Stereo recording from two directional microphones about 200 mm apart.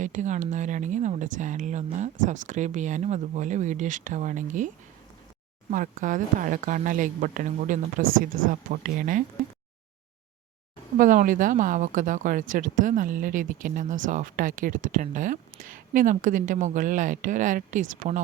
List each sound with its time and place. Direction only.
0.0 s speech: 40° right (ahead or behind)
5.7 s speech: 40° right (ahead or behind)
10.9 s speech: 40° right (ahead or behind)